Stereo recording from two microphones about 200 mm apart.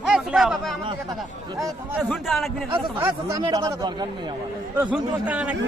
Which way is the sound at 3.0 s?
15° right (ahead or behind).